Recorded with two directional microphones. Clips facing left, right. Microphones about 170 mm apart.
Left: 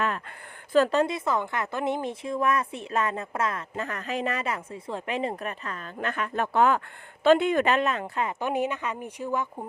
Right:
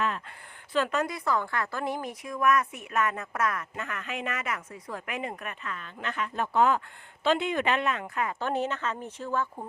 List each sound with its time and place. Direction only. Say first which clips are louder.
0.0 s a sound: left 2 dB; 55° left (ahead or behind)
0.9 s a woman's voice: left 4 dB; 30° left (ahead or behind); by 6.8 s 65° left (ahead or behind)
7.3 s speech: left 6 dB; 50° left (ahead or behind); by 8.4 s 25° left (ahead or behind)
8.4 s speech: left 3 dB; 15° left (ahead or behind)